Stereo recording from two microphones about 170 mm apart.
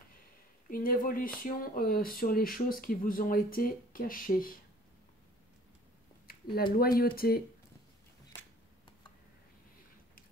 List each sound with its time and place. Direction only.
0.7 s speech: 55° left (ahead or behind)
6.2 s speech: 60° left (ahead or behind)